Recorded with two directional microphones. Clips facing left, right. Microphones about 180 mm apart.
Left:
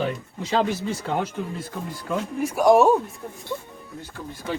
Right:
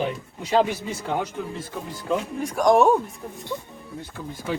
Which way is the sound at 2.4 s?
5° left (ahead or behind).